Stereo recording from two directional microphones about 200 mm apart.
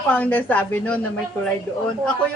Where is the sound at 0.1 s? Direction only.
10° left (ahead or behind).